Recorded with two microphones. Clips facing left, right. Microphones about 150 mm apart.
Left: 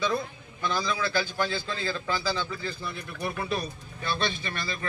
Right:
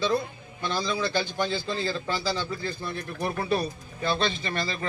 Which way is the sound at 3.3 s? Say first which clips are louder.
Right 6 dB; 35° right (ahead or behind).